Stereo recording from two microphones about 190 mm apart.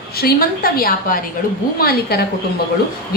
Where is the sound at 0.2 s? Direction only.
50° left (ahead or behind).